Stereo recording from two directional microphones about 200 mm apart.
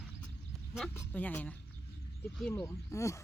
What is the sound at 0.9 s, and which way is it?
Speech, 10° left (ahead or behind).